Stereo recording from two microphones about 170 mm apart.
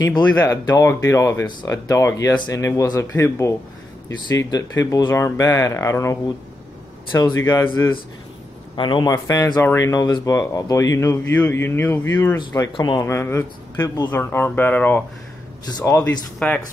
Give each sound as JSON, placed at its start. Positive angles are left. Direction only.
{"t": 0.0, "sound": "speech", "side_deg": 25}
{"t": 8.7, "sound": "speech", "side_deg": 25}
{"t": 12.4, "sound": "speech", "side_deg": 25}